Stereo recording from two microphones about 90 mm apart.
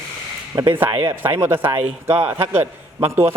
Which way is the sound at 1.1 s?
25° right (ahead or behind).